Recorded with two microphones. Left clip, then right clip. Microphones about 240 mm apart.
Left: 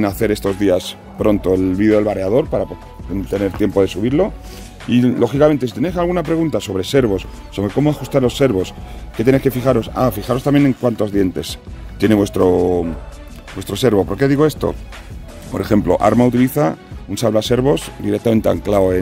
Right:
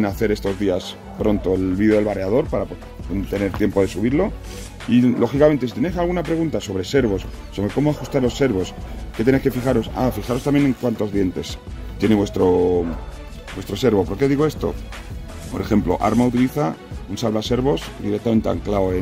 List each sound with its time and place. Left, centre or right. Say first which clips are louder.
0.0 s speech: left 4 dB; left